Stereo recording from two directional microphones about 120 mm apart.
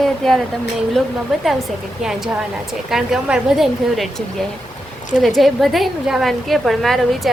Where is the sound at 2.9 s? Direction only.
5° right (ahead or behind).